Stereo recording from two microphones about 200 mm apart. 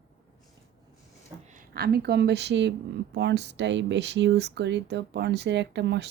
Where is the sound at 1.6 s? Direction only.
50° right (ahead or behind).